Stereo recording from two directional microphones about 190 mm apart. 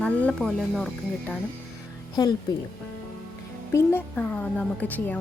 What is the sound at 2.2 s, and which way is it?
Speech, 20° left (ahead or behind).